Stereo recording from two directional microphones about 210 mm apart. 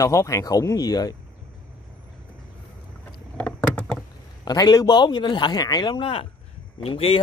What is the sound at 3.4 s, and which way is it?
Rowboat, 5° left (ahead or behind).